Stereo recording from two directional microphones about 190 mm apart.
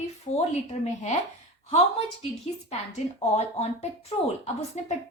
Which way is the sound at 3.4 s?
35° left (ahead or behind).